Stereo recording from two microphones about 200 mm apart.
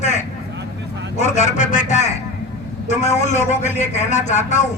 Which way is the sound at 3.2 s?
35° left (ahead or behind).